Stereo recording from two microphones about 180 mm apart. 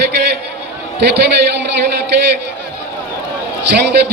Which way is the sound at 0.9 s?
70° right (ahead or behind).